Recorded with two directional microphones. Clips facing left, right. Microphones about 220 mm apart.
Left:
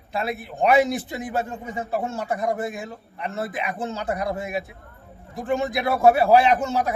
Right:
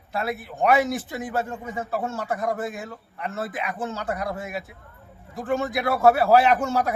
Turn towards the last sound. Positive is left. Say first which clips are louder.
# left 1 dB
turn(degrees=15)  # may be behind; listen again after turning